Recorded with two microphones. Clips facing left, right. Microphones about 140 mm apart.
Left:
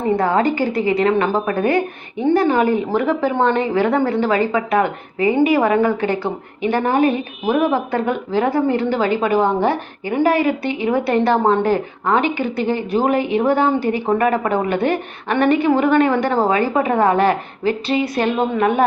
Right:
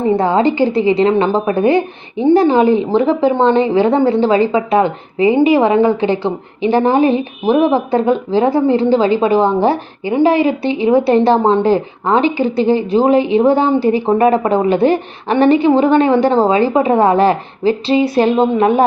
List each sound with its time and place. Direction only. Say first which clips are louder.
0.2 s speech: right 4 dB; 25° right (ahead or behind)